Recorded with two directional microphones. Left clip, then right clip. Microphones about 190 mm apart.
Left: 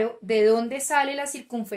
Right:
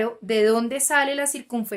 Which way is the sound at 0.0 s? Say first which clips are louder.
Even; 30° right (ahead or behind).